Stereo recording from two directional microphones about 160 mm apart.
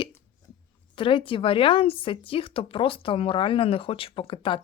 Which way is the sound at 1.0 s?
30° left (ahead or behind).